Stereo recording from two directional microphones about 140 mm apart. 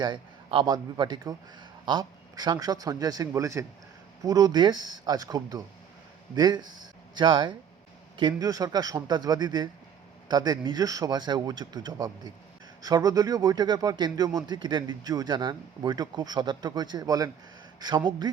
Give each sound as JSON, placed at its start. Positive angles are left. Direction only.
{"t": 0.0, "sound": "a man's voice", "side_deg": -35}